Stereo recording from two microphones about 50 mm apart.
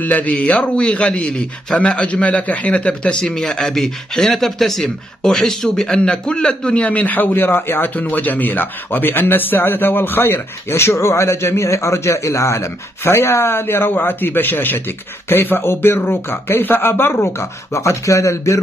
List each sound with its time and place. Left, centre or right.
0.0 s a man's voice: left; by 5.9 s centre
5.9 s a man's voice: centre; by 8.0 s left
8.0 s speech: left